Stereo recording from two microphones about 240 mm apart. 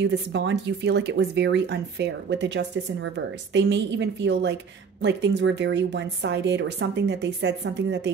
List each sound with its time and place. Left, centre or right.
0.0 s speech: right